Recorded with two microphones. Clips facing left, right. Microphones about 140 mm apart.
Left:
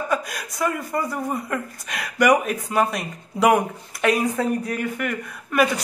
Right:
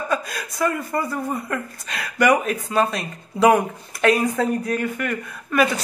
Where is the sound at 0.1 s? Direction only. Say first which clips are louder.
Even; 15° left (ahead or behind).